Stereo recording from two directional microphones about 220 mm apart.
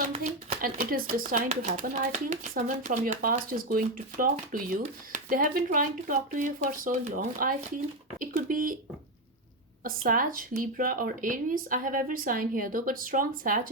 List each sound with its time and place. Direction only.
0.2 s speech: 40° right (ahead or behind)
9.8 s speech: 40° right (ahead or behind)